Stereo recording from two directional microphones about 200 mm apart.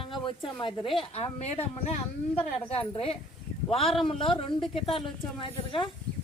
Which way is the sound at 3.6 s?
30° left (ahead or behind).